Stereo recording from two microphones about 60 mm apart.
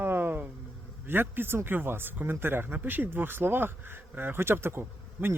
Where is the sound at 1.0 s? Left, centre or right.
Right.